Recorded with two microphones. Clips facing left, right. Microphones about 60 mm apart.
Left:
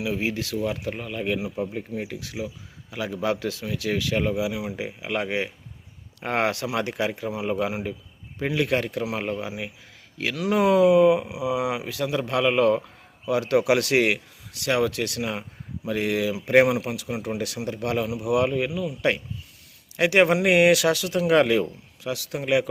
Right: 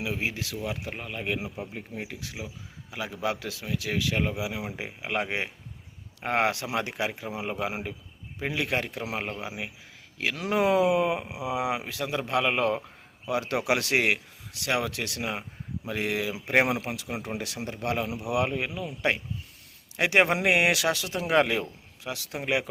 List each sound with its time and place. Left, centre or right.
0.0 s speech: right
4.4 s speech: right
7.1 s speech: centre
8.6 s speech: centre
11.3 s speech: right; by 18.7 s centre
20.0 s speech: right